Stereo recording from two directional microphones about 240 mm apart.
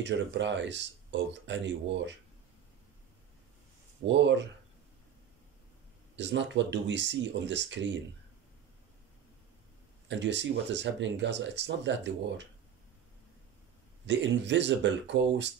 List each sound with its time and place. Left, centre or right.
0.0 s speech: right
4.0 s speech: right
6.1 s speech: right
10.0 s speech: right
14.0 s speech: right